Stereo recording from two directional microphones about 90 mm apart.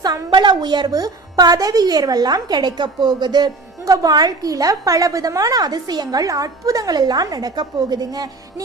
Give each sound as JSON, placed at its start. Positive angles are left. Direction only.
{"t": 0.0, "sound": "a woman's voice", "side_deg": -50}